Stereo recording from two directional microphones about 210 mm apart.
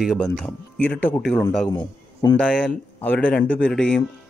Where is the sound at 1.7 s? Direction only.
20° left (ahead or behind).